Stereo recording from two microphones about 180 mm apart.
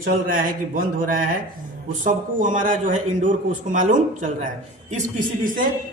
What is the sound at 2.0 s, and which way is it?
A man's voice, 45° right (ahead or behind).